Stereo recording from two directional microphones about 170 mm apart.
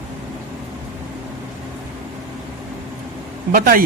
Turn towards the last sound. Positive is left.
turn(degrees=-55)  # may be behind; listen again after turning